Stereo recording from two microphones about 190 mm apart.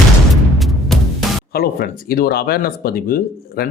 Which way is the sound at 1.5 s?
50° left (ahead or behind).